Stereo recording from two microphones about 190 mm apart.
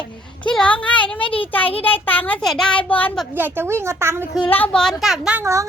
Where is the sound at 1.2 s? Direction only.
30° left (ahead or behind).